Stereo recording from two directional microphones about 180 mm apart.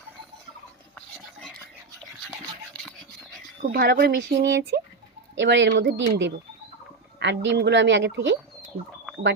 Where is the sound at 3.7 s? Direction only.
60° right (ahead or behind).